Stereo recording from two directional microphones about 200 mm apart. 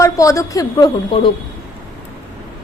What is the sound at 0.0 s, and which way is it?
Speech, 15° left (ahead or behind).